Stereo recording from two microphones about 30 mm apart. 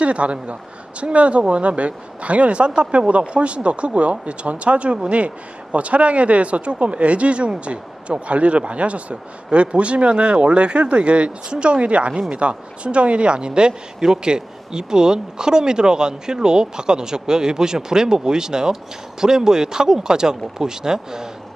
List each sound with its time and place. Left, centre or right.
0.0 s speech: right